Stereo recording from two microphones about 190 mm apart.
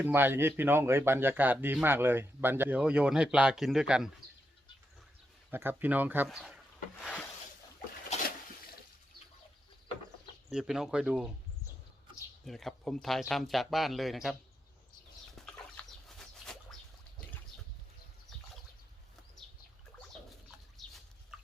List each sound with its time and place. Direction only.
0.0 s speech: 10° right (ahead or behind)
5.5 s speech: 10° right (ahead or behind)
7.0 s a sound: 5° left (ahead or behind)
8.1 s a sound: 35° left (ahead or behind)
10.5 s speech: 5° right (ahead or behind)
12.5 s speech: centre (ahead or behind)
15.4 s chicken: 5° left (ahead or behind)
20.7 s chicken: centre (ahead or behind)